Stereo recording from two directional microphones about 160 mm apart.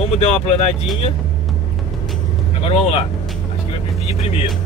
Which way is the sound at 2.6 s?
40° left (ahead or behind).